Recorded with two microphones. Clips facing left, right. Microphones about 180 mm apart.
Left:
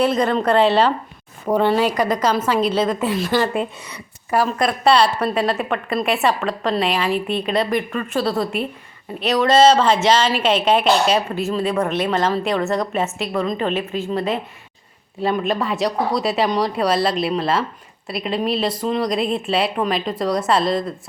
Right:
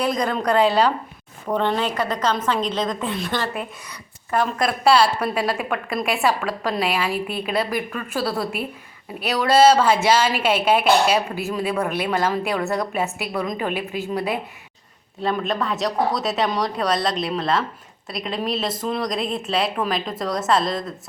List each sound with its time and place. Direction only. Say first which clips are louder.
0.0 s a woman's voice: left 4 dB; 5° left (ahead or behind)
3.4 s speech: left 6 dB; 25° left (ahead or behind)
4.3 s speech: left 3 dB; 5° left (ahead or behind)
15.2 s speech: left 3 dB; centre (ahead or behind)